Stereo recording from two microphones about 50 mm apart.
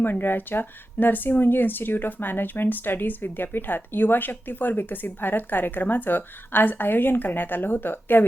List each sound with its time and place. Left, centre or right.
0.0 s speech: left